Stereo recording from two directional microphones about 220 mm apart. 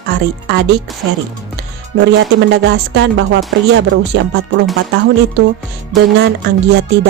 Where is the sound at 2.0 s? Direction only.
55° right (ahead or behind).